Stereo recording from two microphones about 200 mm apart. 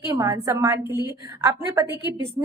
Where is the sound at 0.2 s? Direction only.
15° right (ahead or behind).